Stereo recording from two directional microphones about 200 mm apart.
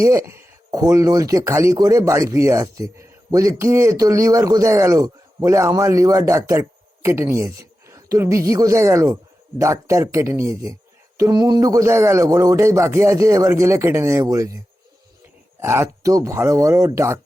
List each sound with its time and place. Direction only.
0.0 s speech: 15° right (ahead or behind)
15.6 s speech: 10° right (ahead or behind)